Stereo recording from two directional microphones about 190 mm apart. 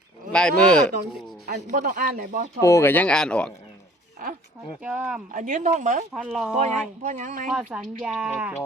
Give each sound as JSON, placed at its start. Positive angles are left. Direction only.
{"t": 0.3, "sound": "speech", "side_deg": 5}
{"t": 1.5, "sound": "speech", "side_deg": -55}
{"t": 2.6, "sound": "speech", "side_deg": 15}
{"t": 4.8, "sound": "speech", "side_deg": -10}
{"t": 5.3, "sound": "speech", "side_deg": -45}
{"t": 6.1, "sound": "speech", "side_deg": 0}
{"t": 6.6, "sound": "speech", "side_deg": -35}
{"t": 7.5, "sound": "speech", "side_deg": -5}